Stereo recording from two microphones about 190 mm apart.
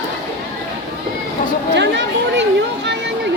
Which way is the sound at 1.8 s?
65° right (ahead or behind).